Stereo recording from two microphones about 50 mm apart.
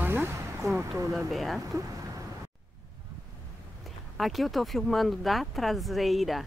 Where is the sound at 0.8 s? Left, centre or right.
Right.